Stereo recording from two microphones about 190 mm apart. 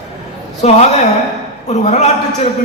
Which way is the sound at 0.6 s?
35° left (ahead or behind).